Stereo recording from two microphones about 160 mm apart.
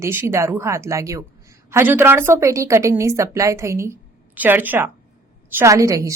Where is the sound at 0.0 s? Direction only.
15° right (ahead or behind).